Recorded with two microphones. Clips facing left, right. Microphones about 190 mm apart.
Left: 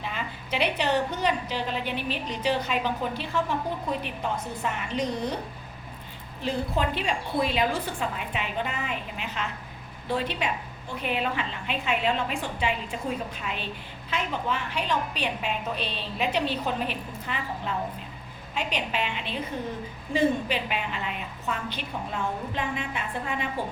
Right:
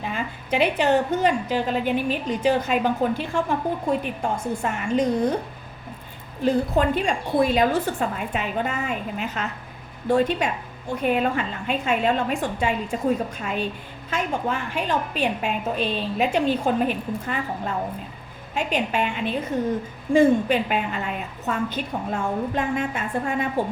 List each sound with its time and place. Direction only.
0.0 s a woman's voice: 45° right (ahead or behind)
6.4 s a woman's voice: 45° right (ahead or behind)